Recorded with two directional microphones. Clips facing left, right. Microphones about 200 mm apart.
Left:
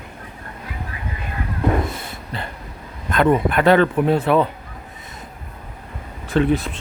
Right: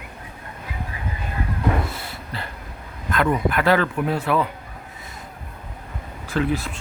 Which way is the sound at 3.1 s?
25° left (ahead or behind).